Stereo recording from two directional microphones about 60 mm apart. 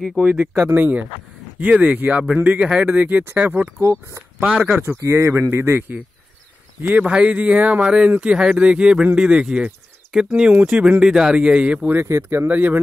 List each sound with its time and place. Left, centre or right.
0.1 s speech: right
4.4 s speech: centre
4.8 s speech: right
12.2 s speech: right
12.4 s speech: right